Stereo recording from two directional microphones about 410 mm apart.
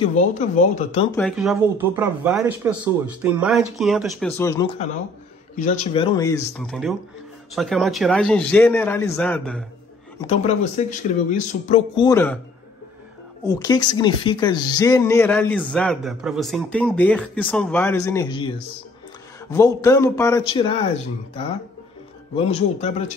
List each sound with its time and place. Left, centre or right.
0.0 s speech: centre
1.1 s speech: centre
10.2 s speech: centre
13.5 s speech: centre
19.5 s speech: centre
22.3 s speech: centre